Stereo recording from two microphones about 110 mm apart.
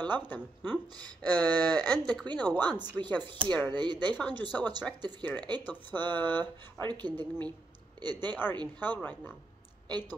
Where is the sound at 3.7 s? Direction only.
40° right (ahead or behind).